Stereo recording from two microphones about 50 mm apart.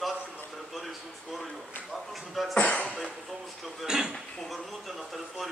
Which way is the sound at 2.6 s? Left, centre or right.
Left.